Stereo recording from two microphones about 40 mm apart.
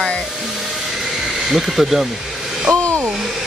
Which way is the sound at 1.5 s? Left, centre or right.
Centre.